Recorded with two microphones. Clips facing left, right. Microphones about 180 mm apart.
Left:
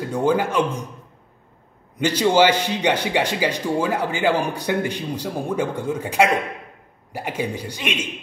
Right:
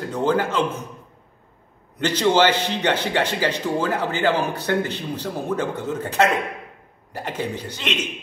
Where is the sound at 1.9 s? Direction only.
10° left (ahead or behind).